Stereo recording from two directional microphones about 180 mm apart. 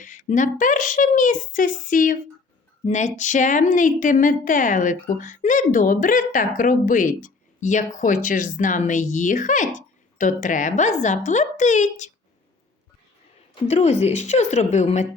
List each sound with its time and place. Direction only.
0.0 s speech: 45° left (ahead or behind)
13.7 s a woman's voice: 40° left (ahead or behind)